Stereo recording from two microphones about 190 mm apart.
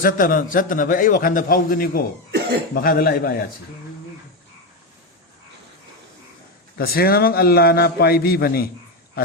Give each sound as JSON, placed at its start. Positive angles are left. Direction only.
{"t": 0.0, "sound": "a man's voice", "side_deg": 50}
{"t": 6.7, "sound": "a man's voice", "side_deg": 55}
{"t": 9.2, "sound": "pig", "side_deg": 50}